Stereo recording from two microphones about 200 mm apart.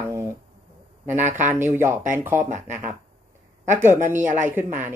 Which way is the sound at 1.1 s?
35° right (ahead or behind).